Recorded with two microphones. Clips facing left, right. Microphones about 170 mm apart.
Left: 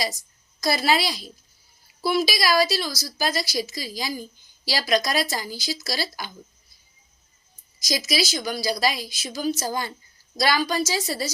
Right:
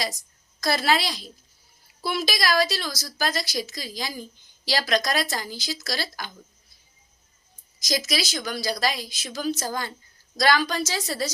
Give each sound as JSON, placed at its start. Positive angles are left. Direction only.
{"t": 0.6, "sound": "a woman's voice", "side_deg": 5}
{"t": 7.8, "sound": "a woman's voice", "side_deg": 5}